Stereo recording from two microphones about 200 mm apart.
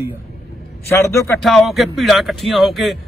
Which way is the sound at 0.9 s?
15° left (ahead or behind).